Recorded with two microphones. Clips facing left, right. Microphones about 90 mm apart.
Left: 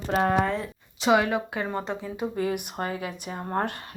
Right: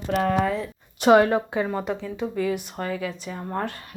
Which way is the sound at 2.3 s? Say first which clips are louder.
Right 3 dB; 40° left (ahead or behind).